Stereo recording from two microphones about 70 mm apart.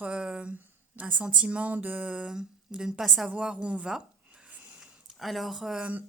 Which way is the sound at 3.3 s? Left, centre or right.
Centre.